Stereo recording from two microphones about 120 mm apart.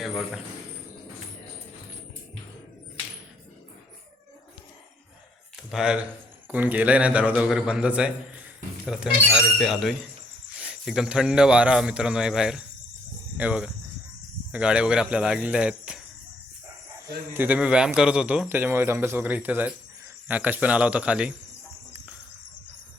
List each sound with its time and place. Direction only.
5.7 s speech: 5° right (ahead or behind)
17.3 s speech: 15° right (ahead or behind)
18.4 s speech: 20° right (ahead or behind)